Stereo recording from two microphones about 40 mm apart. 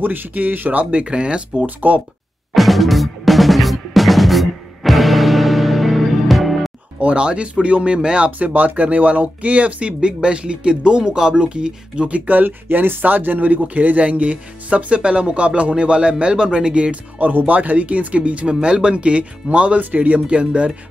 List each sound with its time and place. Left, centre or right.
0.0 s speech: right
1.0 s speech: right
1.8 s speech: right
2.5 s drum: centre
7.0 s speech: right
8.5 s speech: right
12.3 s speech: right
17.2 s speech: right